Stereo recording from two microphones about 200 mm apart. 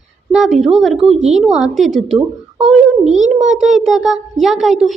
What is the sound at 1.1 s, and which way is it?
Speech, 35° right (ahead or behind).